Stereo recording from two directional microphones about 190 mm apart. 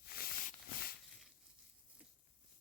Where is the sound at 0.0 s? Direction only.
50° left (ahead or behind).